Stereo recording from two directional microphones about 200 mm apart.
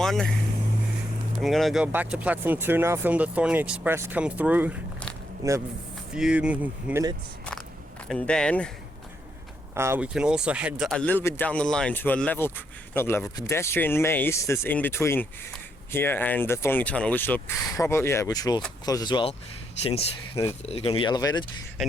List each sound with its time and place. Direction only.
0.0 s speech: centre (ahead or behind)
1.4 s speech: centre (ahead or behind); by 5.6 s 15° right (ahead or behind)
6.1 s speech: 5° right (ahead or behind)
8.0 s speech: 5° left (ahead or behind)
9.7 s speech: 10° right (ahead or behind); by 20.1 s 30° left (ahead or behind)
20.3 s speech: 15° left (ahead or behind)
20.7 s speech: 30° left (ahead or behind)
21.8 s speech: centre (ahead or behind)